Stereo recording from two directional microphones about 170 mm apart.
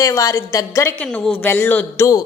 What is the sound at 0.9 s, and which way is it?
A woman's voice, 10° left (ahead or behind).